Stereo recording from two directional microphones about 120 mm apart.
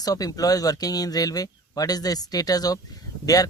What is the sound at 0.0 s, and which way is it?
Speech, 30° left (ahead or behind).